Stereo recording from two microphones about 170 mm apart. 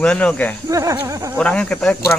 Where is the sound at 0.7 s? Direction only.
20° right (ahead or behind).